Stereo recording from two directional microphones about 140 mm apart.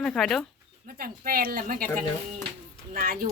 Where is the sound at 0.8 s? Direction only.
90° right.